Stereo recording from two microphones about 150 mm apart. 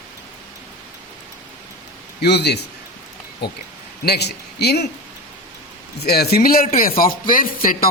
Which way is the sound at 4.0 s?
90° left.